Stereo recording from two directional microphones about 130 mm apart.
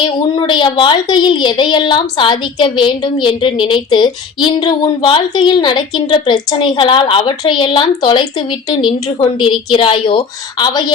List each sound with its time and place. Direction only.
0.3 s a woman's voice: 35° left (ahead or behind)